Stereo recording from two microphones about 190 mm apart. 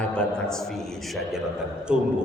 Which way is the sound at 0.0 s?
5° left (ahead or behind).